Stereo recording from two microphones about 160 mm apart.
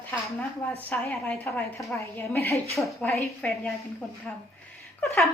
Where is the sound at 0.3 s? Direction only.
10° left (ahead or behind).